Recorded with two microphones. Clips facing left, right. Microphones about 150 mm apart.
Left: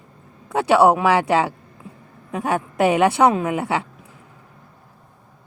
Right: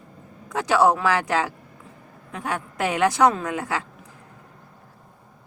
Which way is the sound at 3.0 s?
25° left (ahead or behind).